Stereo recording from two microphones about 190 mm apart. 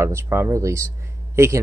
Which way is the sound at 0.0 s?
15° right (ahead or behind).